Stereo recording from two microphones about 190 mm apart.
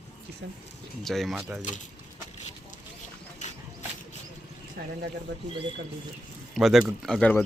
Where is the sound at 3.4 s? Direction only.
40° left (ahead or behind).